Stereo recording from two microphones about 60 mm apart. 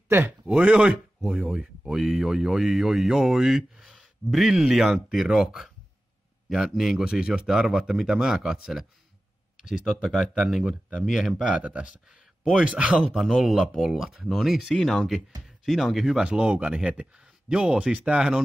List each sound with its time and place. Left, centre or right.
0.5 s speech: centre
11.5 s speech: centre
13.1 s speech: centre
16.3 s speech: centre